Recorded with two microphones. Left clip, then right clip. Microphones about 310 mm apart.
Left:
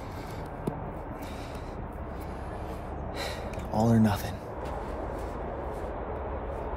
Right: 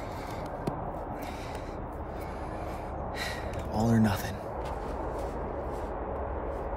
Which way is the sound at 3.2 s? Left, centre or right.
Centre.